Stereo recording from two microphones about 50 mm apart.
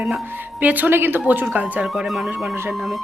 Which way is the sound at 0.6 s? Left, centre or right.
Right.